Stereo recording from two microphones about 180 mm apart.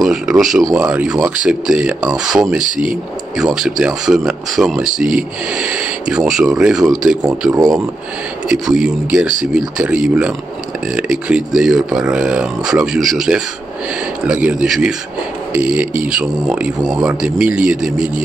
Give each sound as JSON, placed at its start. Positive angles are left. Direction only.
{"t": 0.0, "sound": "speech", "side_deg": -5}
{"t": 7.5, "sound": "speech", "side_deg": -20}
{"t": 8.5, "sound": "speech", "side_deg": -5}